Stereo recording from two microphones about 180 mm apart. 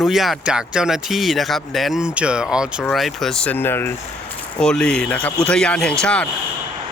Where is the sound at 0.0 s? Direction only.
Centre (ahead or behind).